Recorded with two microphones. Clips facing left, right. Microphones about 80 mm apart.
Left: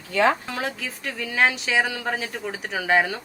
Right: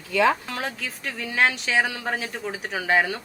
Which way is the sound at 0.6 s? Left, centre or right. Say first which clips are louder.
Left 2 dB; centre.